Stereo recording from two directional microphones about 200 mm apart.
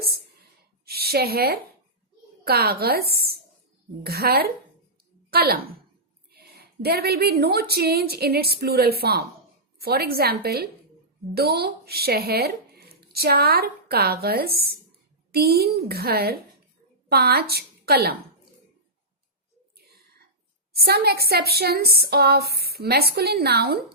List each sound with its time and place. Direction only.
0.9 s a woman's voice: 50° right (ahead or behind)
20.7 s speech: 50° right (ahead or behind)